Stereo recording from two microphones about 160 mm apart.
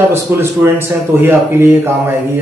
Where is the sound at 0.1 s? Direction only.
15° right (ahead or behind).